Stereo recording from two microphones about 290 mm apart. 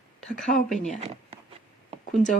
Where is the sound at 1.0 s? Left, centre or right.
Right.